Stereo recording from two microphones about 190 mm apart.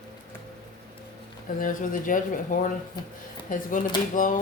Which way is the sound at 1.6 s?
45° left (ahead or behind).